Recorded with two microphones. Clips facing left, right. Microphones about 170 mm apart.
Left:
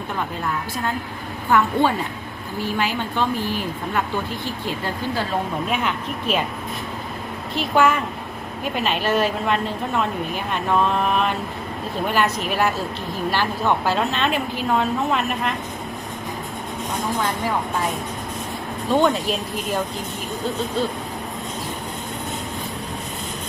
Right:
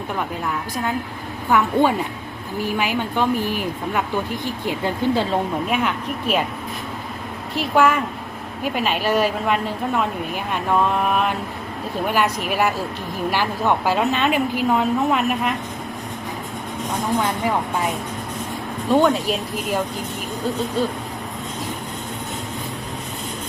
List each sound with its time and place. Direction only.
1.5 s a woman's voice: 15° right (ahead or behind)
5.6 s a woman's voice: 10° right (ahead or behind)
7.5 s a woman's voice: 10° right (ahead or behind)
18.9 s a woman's voice: 10° right (ahead or behind)
20.8 s a woman's voice: 10° right (ahead or behind)